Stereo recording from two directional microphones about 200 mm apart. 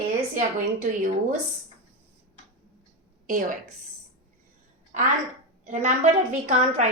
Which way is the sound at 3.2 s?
40° right (ahead or behind).